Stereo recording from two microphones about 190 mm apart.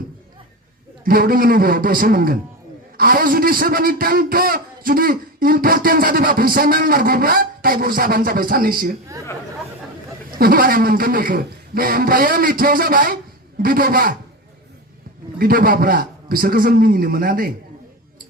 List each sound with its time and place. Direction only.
1.0 s a man's voice: 50° right (ahead or behind)
10.3 s a man's voice: 50° right (ahead or behind)
15.4 s a man's voice: 50° right (ahead or behind)